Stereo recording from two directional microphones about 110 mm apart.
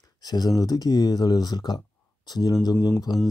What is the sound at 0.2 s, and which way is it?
Speech, 35° left (ahead or behind).